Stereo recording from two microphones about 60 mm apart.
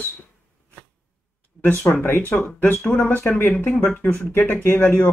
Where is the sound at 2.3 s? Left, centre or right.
Centre.